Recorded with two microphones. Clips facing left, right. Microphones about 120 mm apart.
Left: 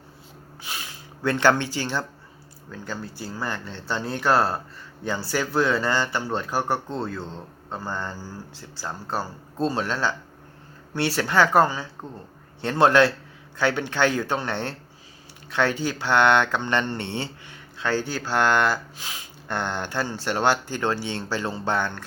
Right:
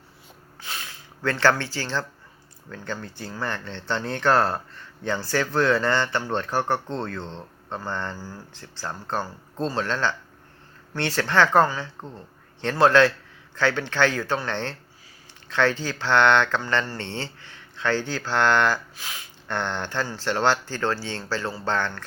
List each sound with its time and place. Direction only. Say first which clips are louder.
0.6 s gasp: even; 15° left (ahead or behind)
2.6 s speech: even; 10° left (ahead or behind)